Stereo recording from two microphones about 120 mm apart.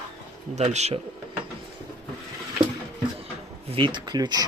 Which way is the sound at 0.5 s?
70° right (ahead or behind).